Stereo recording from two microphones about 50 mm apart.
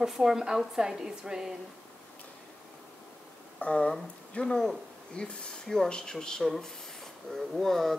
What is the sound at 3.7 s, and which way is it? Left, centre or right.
Speech, centre.